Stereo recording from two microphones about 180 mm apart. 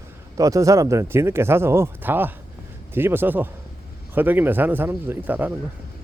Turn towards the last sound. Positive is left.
turn(degrees=-10)  # may be behind; listen again after turning